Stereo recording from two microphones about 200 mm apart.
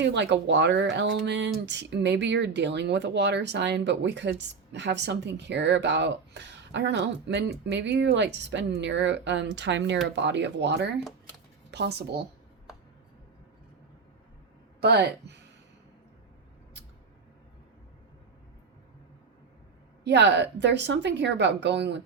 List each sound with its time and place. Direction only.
0.0 s speech: 60° right (ahead or behind)
14.8 s speech: 55° right (ahead or behind)
20.1 s speech: 60° right (ahead or behind)